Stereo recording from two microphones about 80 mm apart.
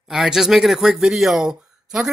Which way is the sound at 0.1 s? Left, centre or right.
Centre.